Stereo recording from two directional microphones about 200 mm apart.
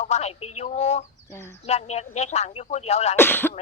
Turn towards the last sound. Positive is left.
turn(degrees=10)  # may be behind; listen again after turning